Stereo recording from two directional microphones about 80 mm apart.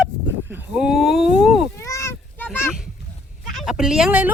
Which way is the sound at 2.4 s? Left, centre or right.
Left.